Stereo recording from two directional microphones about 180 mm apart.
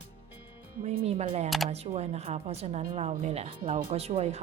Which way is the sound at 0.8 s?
35° right (ahead or behind).